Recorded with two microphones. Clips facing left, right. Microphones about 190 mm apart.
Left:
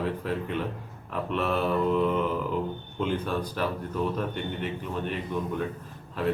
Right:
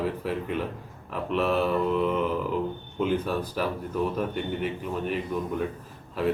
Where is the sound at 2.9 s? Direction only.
5° right (ahead or behind).